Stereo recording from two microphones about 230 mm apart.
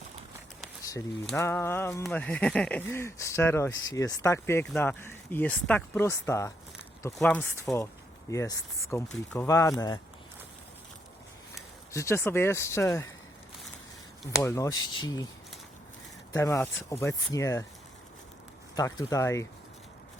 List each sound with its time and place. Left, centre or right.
1.4 s speech: centre
11.9 s speech: centre
14.3 s speech: centre
16.3 s speech: centre
18.7 s speech: centre